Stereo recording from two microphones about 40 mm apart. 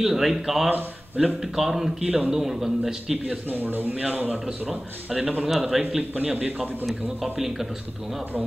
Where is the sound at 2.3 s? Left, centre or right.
Centre.